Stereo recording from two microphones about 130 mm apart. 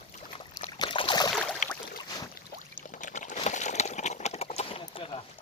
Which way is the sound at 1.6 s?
70° left (ahead or behind).